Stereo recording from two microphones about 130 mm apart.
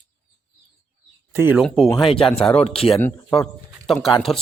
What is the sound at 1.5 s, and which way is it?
Speech, centre (ahead or behind).